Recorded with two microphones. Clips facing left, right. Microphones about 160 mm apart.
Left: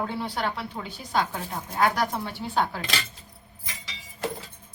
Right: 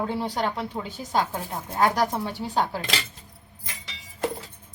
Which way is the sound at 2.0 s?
40° right (ahead or behind).